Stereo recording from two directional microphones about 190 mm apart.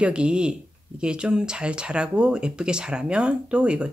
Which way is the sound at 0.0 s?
5° right (ahead or behind).